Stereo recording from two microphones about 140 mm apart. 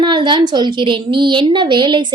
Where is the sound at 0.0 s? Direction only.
35° right (ahead or behind).